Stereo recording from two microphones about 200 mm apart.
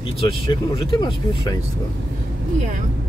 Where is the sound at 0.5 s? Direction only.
25° left (ahead or behind).